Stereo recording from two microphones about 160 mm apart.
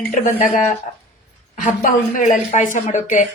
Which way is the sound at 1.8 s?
55° left (ahead or behind).